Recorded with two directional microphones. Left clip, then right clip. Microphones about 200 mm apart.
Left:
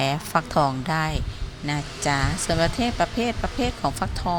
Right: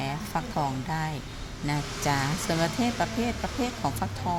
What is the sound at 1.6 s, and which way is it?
Speech, 15° left (ahead or behind).